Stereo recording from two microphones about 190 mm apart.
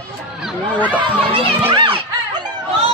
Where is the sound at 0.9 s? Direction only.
10° right (ahead or behind).